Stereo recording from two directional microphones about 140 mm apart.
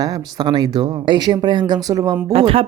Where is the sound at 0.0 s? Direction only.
25° right (ahead or behind).